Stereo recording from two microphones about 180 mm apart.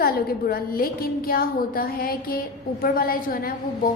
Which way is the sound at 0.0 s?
55° left (ahead or behind).